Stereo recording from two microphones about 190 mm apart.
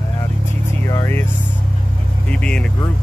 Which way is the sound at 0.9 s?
15° left (ahead or behind).